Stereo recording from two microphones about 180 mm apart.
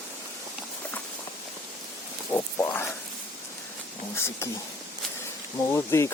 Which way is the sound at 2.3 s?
15° left (ahead or behind).